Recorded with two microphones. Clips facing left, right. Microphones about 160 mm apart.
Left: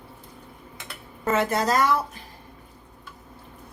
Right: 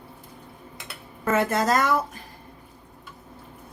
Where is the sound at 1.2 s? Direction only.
50° right (ahead or behind).